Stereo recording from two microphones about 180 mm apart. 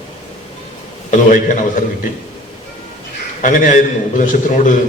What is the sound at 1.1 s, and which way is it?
Speech, 45° left (ahead or behind).